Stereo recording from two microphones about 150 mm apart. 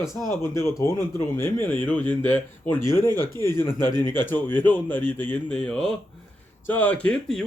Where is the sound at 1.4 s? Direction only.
15° left (ahead or behind).